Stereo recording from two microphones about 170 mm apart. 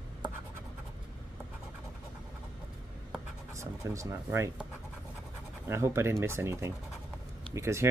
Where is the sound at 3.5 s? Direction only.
20° right (ahead or behind).